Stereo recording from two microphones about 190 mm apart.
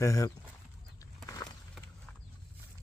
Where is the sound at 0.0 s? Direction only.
15° left (ahead or behind).